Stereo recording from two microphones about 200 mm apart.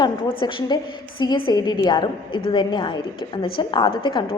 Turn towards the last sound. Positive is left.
turn(degrees=25)  # may be behind; listen again after turning